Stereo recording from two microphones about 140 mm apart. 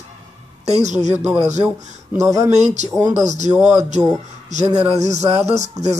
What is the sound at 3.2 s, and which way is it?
Speech, 55° right (ahead or behind).